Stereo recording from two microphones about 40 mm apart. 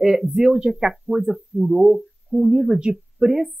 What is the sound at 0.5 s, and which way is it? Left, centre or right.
Speech, centre.